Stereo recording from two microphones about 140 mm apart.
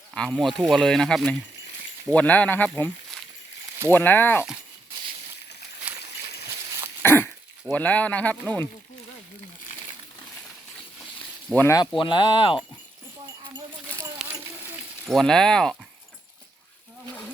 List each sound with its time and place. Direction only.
0.3 s speech: centre (ahead or behind)
3.9 s speech: 15° left (ahead or behind)
5.8 s a sound: 10° right (ahead or behind)
7.0 s speech: 15° left (ahead or behind)
11.5 s speech: 15° left (ahead or behind)
11.9 s speech: 35° left (ahead or behind)
14.2 s a sound: 5° right (ahead or behind)
15.0 s speech: 5° left (ahead or behind)